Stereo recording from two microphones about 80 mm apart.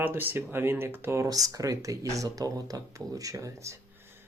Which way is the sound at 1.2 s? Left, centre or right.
Right.